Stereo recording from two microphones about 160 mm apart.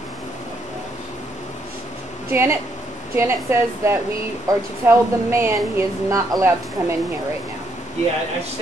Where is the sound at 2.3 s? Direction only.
15° right (ahead or behind).